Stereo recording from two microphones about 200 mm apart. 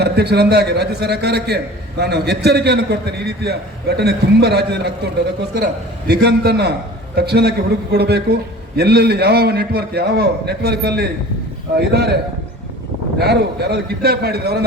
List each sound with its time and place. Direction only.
0.0 s a man's voice: 55° right (ahead or behind)
6.1 s a man's voice: 50° right (ahead or behind)